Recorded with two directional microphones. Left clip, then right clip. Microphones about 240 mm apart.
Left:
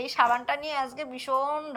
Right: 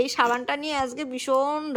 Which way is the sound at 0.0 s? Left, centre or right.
Centre.